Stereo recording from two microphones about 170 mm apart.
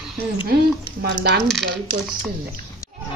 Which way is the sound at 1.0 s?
70° right (ahead or behind).